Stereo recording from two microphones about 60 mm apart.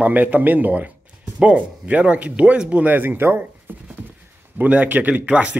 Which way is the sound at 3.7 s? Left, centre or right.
Right.